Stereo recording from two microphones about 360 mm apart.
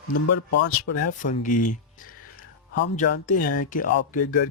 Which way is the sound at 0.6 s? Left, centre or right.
Left.